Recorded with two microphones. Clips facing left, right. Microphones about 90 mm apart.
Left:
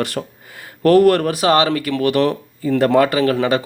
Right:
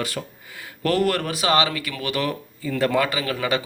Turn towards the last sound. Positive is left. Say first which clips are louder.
# left 7 dB
turn(degrees=35)  # may be behind; listen again after turning